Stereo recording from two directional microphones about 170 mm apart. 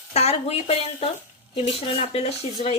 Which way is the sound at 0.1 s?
40° left (ahead or behind).